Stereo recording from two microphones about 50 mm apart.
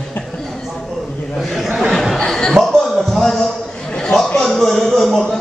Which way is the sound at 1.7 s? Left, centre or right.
Centre.